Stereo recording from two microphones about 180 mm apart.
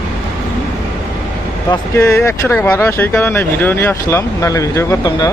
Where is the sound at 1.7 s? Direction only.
15° left (ahead or behind).